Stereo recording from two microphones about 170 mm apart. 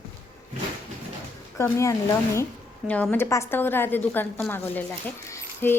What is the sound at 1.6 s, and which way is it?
A woman's voice, 15° left (ahead or behind).